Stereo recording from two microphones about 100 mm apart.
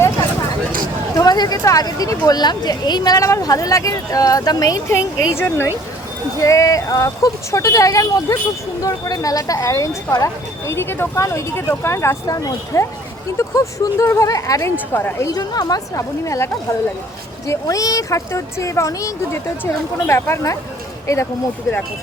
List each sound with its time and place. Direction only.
1.1 s speech: 40° left (ahead or behind)
10.7 s speech: 25° left (ahead or behind)
14.9 s speech: 20° left (ahead or behind)
15.4 s speech: 40° left (ahead or behind)